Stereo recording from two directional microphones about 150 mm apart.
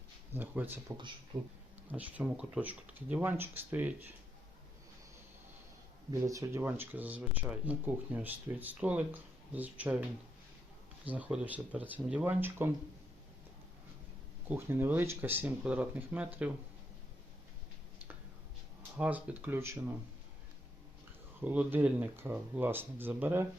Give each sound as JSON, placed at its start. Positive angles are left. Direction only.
{"t": 0.3, "sound": "speech", "side_deg": -15}
{"t": 1.3, "sound": "speech", "side_deg": -25}
{"t": 1.9, "sound": "speech", "side_deg": -10}
{"t": 6.1, "sound": "speech", "side_deg": -20}
{"t": 11.0, "sound": "speech", "side_deg": -10}
{"t": 14.4, "sound": "speech", "side_deg": -15}
{"t": 18.9, "sound": "speech", "side_deg": -10}
{"t": 21.4, "sound": "speech", "side_deg": -10}